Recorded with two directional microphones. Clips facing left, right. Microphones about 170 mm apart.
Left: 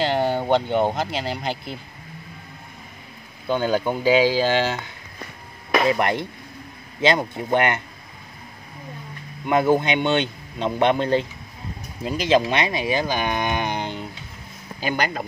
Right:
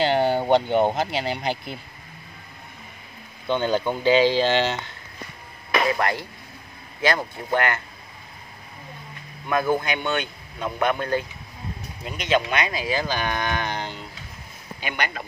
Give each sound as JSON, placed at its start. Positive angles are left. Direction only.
{"t": 0.0, "sound": "speech", "side_deg": 0}
{"t": 3.4, "sound": "speech", "side_deg": 5}
{"t": 5.7, "sound": "speech", "side_deg": 25}
{"t": 9.5, "sound": "speech", "side_deg": 25}
{"t": 14.8, "sound": "speech", "side_deg": 35}